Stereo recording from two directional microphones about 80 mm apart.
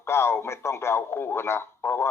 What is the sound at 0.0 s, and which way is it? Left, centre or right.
Speech, left.